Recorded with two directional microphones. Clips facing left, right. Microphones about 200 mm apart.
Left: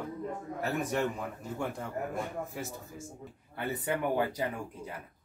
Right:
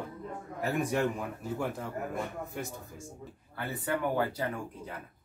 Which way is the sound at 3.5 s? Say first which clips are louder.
Left 1 dB; 20° left (ahead or behind).